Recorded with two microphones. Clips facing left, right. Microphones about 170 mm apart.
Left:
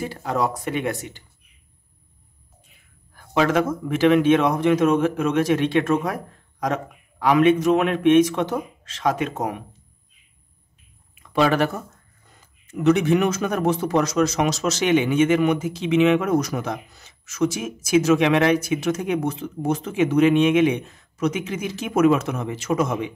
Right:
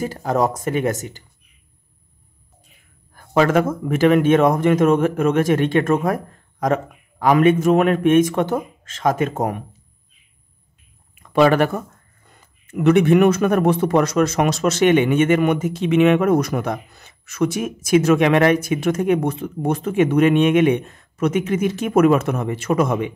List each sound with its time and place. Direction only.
0.0 s speech: 45° right (ahead or behind)
3.2 s speech: 50° right (ahead or behind)
11.3 s speech: 55° right (ahead or behind)